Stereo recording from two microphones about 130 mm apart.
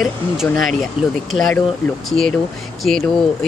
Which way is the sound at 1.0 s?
40° left (ahead or behind).